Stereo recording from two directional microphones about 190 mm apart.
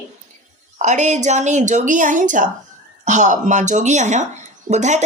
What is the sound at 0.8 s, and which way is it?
Speech, 40° right (ahead or behind).